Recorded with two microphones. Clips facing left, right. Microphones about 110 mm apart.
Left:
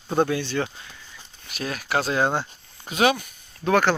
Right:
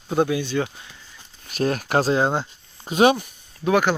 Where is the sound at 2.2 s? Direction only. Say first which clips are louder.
Right 1 dB; 20° right (ahead or behind).